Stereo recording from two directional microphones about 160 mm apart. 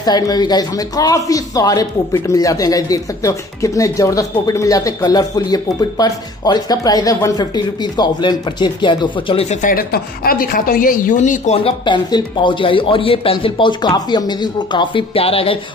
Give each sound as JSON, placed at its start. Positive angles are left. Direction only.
{"t": 0.0, "sound": "speech", "side_deg": 25}
{"t": 9.6, "sound": "a woman's voice", "side_deg": 60}
{"t": 11.5, "sound": "a man's voice", "side_deg": 35}